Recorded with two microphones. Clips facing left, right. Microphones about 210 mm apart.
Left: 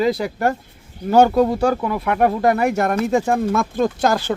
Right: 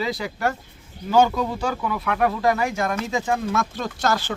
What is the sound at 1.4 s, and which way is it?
Speech, 40° left (ahead or behind).